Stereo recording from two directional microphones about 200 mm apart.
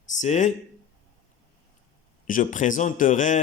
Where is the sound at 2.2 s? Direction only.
40° left (ahead or behind).